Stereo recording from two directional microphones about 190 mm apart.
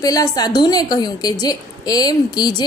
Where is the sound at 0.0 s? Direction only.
20° left (ahead or behind).